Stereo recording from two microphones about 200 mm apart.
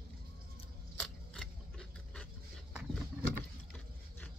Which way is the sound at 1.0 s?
Centre (ahead or behind).